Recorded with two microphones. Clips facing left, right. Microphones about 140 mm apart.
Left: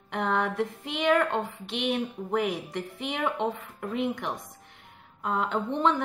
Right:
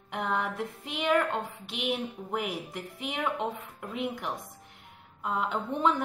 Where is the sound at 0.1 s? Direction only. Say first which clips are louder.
Left 3 dB; 5° right (ahead or behind).